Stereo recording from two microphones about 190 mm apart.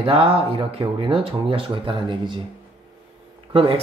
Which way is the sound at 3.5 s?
30° right (ahead or behind).